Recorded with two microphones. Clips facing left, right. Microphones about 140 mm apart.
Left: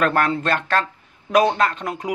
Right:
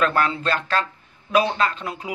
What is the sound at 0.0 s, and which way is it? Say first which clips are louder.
Speech: left 2 dB; 50° left (ahead or behind).